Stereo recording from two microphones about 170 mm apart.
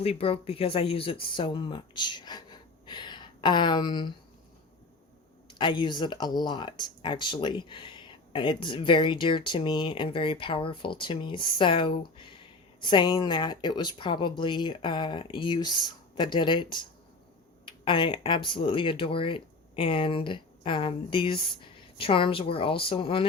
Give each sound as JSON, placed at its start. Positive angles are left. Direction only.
{"t": 0.0, "sound": "speech", "side_deg": 35}
{"t": 5.5, "sound": "speech", "side_deg": 30}